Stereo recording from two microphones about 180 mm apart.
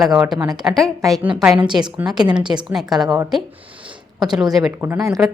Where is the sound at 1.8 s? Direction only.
25° right (ahead or behind).